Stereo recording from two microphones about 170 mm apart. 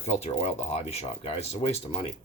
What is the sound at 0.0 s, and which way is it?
Speech, 40° left (ahead or behind).